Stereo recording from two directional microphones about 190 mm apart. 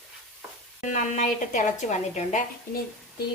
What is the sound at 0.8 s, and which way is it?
A woman's voice, 40° left (ahead or behind).